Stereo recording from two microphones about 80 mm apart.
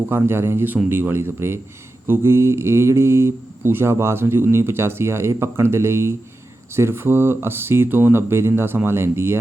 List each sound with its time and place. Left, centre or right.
0.1 s speech: right